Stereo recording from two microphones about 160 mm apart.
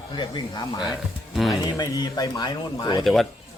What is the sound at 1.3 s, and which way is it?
Speech, centre (ahead or behind).